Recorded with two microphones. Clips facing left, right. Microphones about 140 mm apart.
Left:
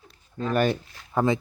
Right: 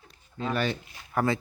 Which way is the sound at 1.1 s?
20° left (ahead or behind).